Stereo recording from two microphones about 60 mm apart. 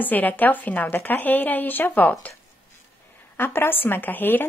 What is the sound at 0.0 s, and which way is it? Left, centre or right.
Speech, left.